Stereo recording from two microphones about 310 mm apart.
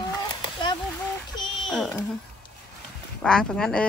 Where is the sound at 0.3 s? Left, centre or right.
Centre.